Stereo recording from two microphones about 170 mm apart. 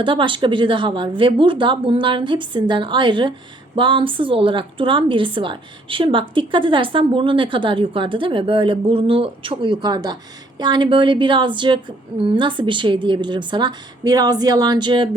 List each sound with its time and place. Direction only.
0.0 s a woman's voice: 30° right (ahead or behind)